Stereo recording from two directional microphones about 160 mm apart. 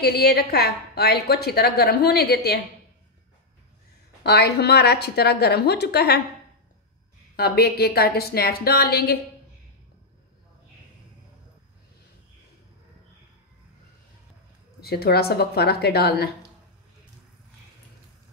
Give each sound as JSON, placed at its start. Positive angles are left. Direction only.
{"t": 0.0, "sound": "a woman's voice", "side_deg": 80}
{"t": 4.2, "sound": "a woman's voice", "side_deg": 90}
{"t": 7.3, "sound": "a woman's voice", "side_deg": 80}
{"t": 14.8, "sound": "a woman's voice", "side_deg": 75}